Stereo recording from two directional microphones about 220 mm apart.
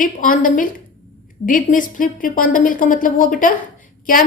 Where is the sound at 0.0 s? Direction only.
35° left (ahead or behind).